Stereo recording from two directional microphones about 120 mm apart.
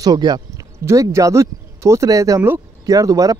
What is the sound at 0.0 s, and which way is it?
Speech, 35° right (ahead or behind).